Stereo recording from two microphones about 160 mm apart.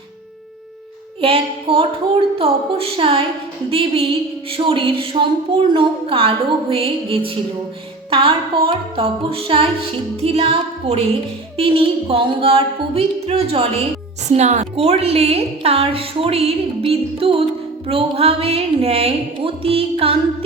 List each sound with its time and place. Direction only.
1.2 s a woman's voice: 35° right (ahead or behind)